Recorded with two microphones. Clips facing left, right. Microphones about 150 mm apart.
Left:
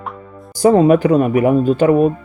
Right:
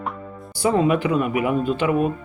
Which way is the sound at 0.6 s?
40° left (ahead or behind).